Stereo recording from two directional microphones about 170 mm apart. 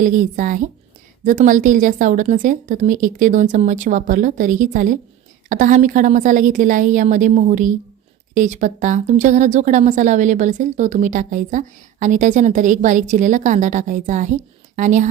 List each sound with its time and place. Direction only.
0.0 s a woman's voice: 50° right (ahead or behind)